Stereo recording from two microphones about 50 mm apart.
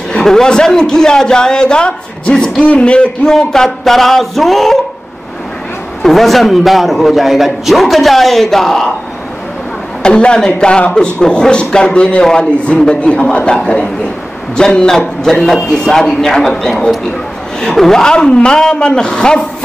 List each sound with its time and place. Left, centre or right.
0.2 s a man's voice: centre
3.3 s a man's voice: centre
6.0 s a man's voice: centre
10.0 s a man's voice: centre
14.6 s speech: centre